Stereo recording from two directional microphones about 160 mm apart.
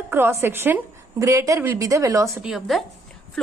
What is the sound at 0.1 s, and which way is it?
Speech, 15° right (ahead or behind).